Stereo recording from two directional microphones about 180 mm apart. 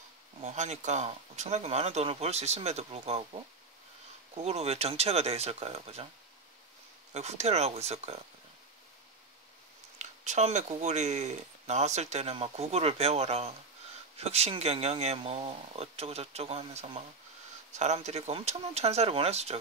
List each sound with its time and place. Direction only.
0.4 s speech: 40° right (ahead or behind)
4.4 s speech: 35° right (ahead or behind)
7.2 s speech: 40° right (ahead or behind)
9.9 s speech: 40° right (ahead or behind)